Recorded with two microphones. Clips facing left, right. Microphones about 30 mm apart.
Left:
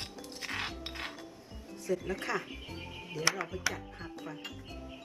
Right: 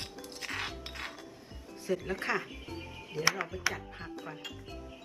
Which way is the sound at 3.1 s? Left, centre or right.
Centre.